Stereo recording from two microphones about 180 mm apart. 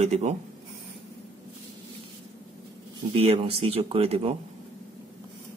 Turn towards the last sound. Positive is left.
turn(degrees=-35)  # may be behind; listen again after turning